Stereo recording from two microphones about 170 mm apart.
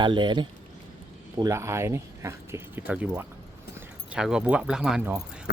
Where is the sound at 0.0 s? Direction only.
25° right (ahead or behind).